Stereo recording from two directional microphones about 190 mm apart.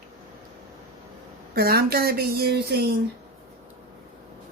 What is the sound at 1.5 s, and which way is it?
Speech, 55° right (ahead or behind).